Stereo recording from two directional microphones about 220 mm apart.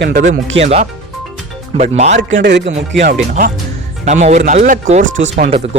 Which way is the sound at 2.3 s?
50° right (ahead or behind).